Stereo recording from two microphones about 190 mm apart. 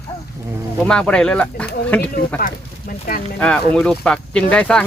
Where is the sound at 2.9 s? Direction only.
45° left (ahead or behind).